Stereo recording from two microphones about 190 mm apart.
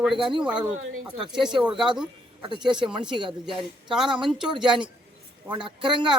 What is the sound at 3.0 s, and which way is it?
Speech, 25° right (ahead or behind).